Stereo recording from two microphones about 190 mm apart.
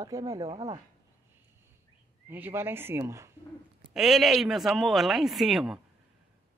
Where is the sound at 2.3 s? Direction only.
10° right (ahead or behind).